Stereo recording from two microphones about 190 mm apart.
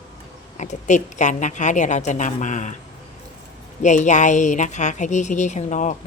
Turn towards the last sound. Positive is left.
turn(degrees=40)  # may be behind; listen again after turning